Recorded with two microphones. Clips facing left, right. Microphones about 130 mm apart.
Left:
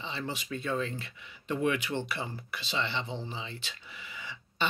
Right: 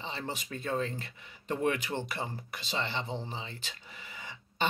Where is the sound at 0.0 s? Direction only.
45° right (ahead or behind).